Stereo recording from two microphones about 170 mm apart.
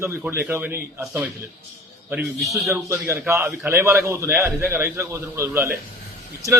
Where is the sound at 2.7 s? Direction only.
15° right (ahead or behind).